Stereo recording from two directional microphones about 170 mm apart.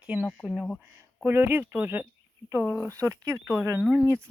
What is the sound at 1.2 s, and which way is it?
Speech, 15° right (ahead or behind).